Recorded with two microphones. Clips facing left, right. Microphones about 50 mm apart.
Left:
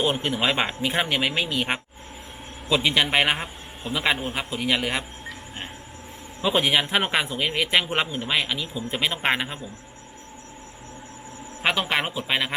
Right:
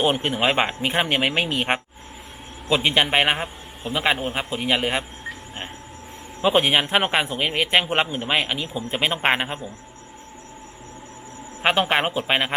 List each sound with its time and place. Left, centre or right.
0.0 s speech: right
2.6 s a man's voice: right
6.5 s speech: right
7.0 s a man's voice: right
7.3 s a man's voice: right
11.6 s speech: right